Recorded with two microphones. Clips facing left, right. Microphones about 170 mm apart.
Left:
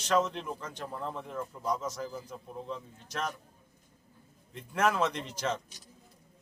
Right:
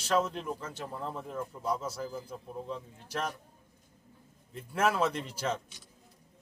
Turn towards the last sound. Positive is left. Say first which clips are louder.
# even
turn(degrees=-5)  # may be behind; listen again after turning